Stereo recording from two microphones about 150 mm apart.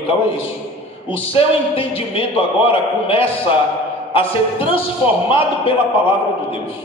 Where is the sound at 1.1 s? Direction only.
40° left (ahead or behind).